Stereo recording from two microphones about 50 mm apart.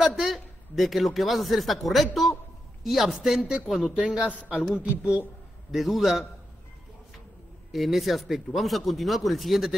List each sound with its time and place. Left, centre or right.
0.0 s speech: centre
3.9 s a man's voice: centre
5.7 s speech: centre
7.7 s speech: centre